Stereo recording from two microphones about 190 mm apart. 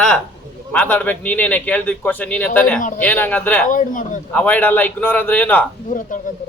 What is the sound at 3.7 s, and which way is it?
Speech, 45° left (ahead or behind).